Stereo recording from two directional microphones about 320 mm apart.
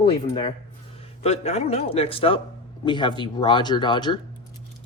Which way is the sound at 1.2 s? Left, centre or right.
Centre.